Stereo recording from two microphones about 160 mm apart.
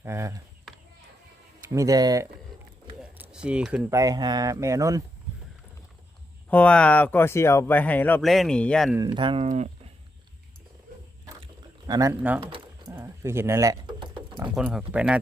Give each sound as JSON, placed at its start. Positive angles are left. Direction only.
{"t": 0.0, "sound": "speech", "side_deg": -15}
{"t": 1.7, "sound": "speech", "side_deg": -20}
{"t": 3.0, "sound": "a sound", "side_deg": -5}
{"t": 3.8, "sound": "speech", "side_deg": -20}
{"t": 6.5, "sound": "speech", "side_deg": 10}
{"t": 8.2, "sound": "speech", "side_deg": 0}
{"t": 9.0, "sound": "speech", "side_deg": -30}
{"t": 9.4, "sound": "speech", "side_deg": -45}
{"t": 11.9, "sound": "speech", "side_deg": -20}
{"t": 12.4, "sound": "speech", "side_deg": -30}
{"t": 12.9, "sound": "speech", "side_deg": -15}
{"t": 14.3, "sound": "speech", "side_deg": -10}